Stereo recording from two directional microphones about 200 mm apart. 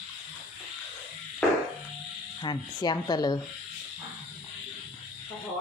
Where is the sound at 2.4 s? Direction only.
20° left (ahead or behind).